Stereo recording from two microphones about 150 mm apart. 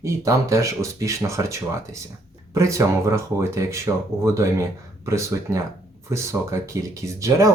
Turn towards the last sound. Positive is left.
turn(degrees=-20)  # may be behind; listen again after turning